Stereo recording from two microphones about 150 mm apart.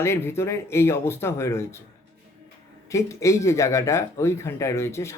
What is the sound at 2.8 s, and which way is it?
Speech, 20° left (ahead or behind).